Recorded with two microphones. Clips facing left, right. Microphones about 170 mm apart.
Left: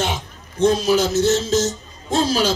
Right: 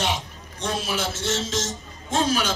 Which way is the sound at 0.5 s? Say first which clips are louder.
Left 12 dB; 40° left (ahead or behind).